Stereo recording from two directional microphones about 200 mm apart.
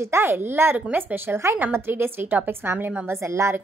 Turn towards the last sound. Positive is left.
turn(degrees=-15)  # may be behind; listen again after turning